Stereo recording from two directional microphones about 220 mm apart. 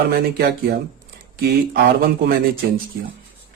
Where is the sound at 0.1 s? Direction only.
45° right (ahead or behind).